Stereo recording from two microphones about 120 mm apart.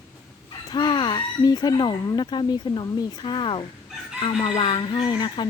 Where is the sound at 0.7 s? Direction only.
40° left (ahead or behind).